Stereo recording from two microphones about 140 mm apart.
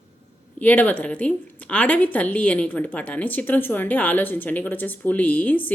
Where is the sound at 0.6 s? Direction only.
10° left (ahead or behind).